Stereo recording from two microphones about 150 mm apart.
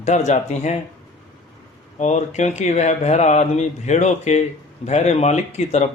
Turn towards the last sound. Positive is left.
turn(degrees=50)  # may be behind; listen again after turning